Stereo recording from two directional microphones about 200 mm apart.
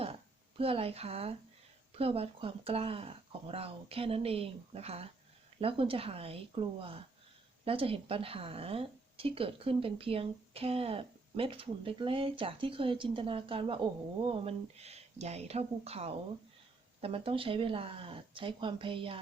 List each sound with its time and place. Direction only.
0.6 s speech: 30° right (ahead or behind)